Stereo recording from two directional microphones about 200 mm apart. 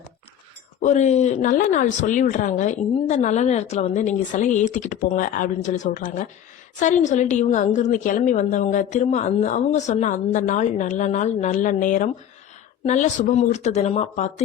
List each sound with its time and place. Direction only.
0.8 s speech: 35° left (ahead or behind)